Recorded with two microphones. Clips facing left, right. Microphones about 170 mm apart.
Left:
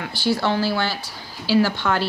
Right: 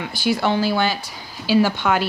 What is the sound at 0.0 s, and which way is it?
Speech, 15° right (ahead or behind).